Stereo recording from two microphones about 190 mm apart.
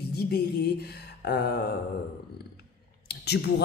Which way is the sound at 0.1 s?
55° left (ahead or behind).